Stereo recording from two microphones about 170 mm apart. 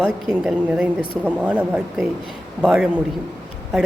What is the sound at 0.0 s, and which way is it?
Speech, 5° right (ahead or behind).